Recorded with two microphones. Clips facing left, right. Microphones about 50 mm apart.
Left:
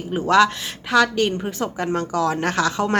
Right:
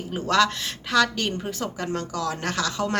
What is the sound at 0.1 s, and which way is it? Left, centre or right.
A woman's voice, centre.